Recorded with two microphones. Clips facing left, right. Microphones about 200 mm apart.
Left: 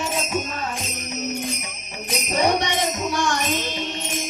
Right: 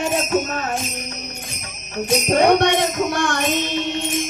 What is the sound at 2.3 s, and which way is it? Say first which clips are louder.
Music: right 6 dB; 55° right (ahead or behind).